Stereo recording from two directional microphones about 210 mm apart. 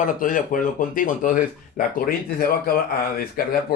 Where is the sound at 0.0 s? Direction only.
40° left (ahead or behind).